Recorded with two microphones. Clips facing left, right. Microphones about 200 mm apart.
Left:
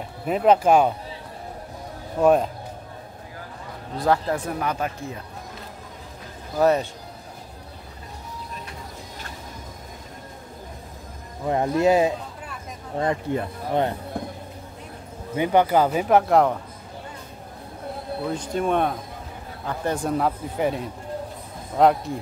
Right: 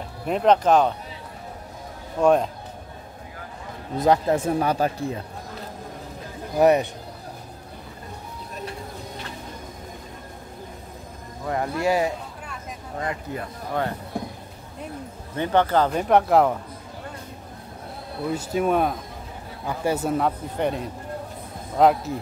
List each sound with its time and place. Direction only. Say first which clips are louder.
0.3 s speech: left 1 dB; 5° left (ahead or behind)
2.2 s a man's voice: left 1 dB; 5° left (ahead or behind)
4.0 s speech: right 3 dB; 20° right (ahead or behind)
6.5 s speech: right 2 dB; 15° right (ahead or behind)
11.4 s speech: left 4 dB; 20° left (ahead or behind)
15.3 s speech: left 2 dB; 10° left (ahead or behind)
18.3 s a man's voice: right 2 dB; 5° right (ahead or behind)